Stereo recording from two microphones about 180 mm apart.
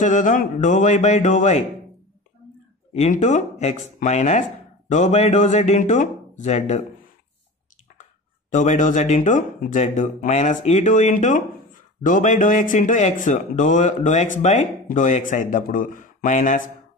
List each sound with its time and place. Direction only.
0.0 s speech: 45° left (ahead or behind)
2.9 s speech: 40° left (ahead or behind)
8.5 s speech: 40° left (ahead or behind)